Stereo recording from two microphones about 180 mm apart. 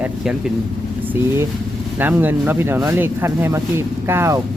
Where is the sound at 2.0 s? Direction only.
10° right (ahead or behind).